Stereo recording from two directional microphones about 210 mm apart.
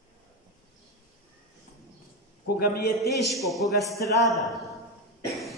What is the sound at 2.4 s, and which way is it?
Speech, 45° left (ahead or behind).